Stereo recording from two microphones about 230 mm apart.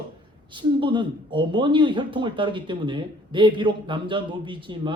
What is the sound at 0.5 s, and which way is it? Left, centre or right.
Speech, right.